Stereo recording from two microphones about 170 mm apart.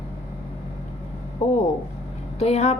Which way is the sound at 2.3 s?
40° left (ahead or behind).